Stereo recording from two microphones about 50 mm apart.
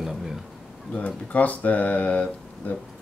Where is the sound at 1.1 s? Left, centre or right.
Left.